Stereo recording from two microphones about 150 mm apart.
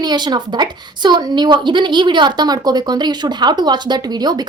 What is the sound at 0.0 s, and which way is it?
A woman's voice, 30° right (ahead or behind).